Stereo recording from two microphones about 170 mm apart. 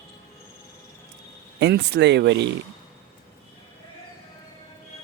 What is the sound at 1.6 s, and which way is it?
Speech, 85° right.